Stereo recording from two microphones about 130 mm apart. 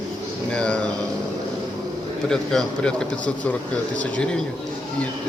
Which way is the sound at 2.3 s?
5° left (ahead or behind).